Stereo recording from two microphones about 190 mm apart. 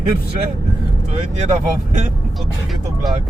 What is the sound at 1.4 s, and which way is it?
Speech, 40° right (ahead or behind).